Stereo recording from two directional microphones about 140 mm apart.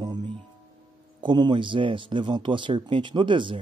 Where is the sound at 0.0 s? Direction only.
30° right (ahead or behind).